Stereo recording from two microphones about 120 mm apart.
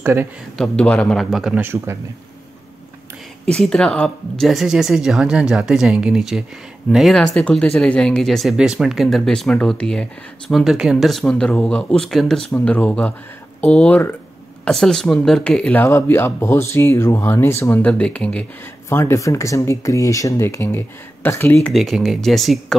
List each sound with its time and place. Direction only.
0.0 s a man's voice: 20° right (ahead or behind)
0.6 s speech: 5° left (ahead or behind)
1.6 s a man's voice: 20° right (ahead or behind)
3.5 s speech: 5° left (ahead or behind)
15.9 s speech: 20° left (ahead or behind)
18.9 s speech: 25° left (ahead or behind)
21.5 s speech: centre (ahead or behind)